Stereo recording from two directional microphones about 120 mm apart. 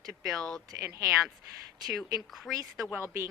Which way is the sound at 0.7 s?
25° right (ahead or behind).